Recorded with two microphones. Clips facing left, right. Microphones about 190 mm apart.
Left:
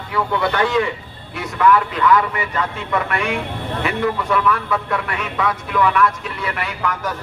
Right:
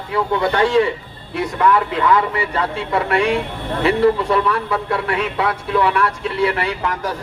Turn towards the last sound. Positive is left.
turn(degrees=-30)  # may be behind; listen again after turning